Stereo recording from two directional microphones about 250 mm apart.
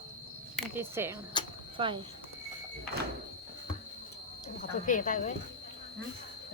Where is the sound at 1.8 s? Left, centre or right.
Right.